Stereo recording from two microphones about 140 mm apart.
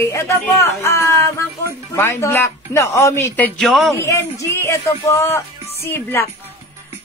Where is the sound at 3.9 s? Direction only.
20° left (ahead or behind).